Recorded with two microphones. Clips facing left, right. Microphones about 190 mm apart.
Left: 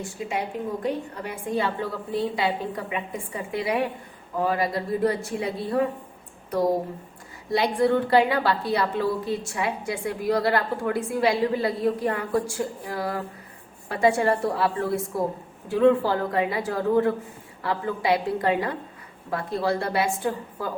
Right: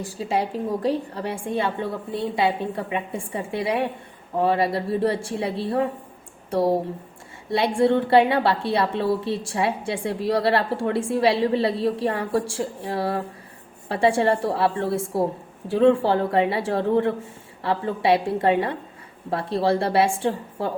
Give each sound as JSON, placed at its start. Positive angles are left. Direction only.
{"t": 0.0, "sound": "a woman's voice", "side_deg": -30}